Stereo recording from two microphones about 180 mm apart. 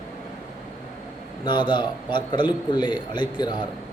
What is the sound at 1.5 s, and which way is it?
A man's voice, 25° left (ahead or behind).